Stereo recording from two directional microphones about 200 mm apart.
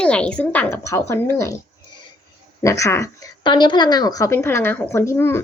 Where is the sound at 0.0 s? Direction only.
5° left (ahead or behind).